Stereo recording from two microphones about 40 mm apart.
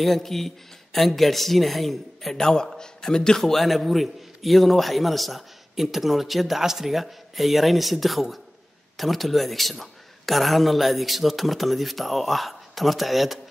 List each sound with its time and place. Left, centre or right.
0.0 s a man's voice: centre